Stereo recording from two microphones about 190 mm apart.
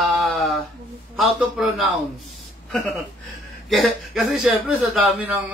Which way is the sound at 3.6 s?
Centre (ahead or behind).